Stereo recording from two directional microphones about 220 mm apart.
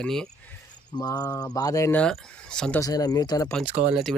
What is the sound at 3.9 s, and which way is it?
Speech, centre (ahead or behind).